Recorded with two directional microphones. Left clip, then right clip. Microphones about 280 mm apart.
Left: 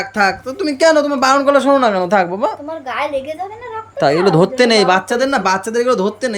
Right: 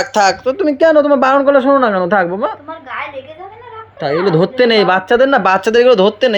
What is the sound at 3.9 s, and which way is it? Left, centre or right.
Speech, centre.